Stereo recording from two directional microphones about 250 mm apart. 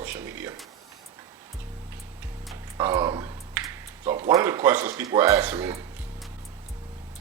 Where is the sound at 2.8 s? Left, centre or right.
Centre.